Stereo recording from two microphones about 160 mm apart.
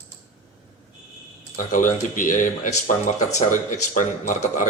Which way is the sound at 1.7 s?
55° left (ahead or behind).